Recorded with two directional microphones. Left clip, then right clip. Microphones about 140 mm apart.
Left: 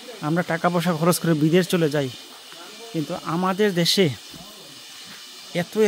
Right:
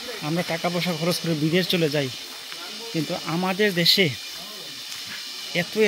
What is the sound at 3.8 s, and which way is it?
Speech, 65° left (ahead or behind).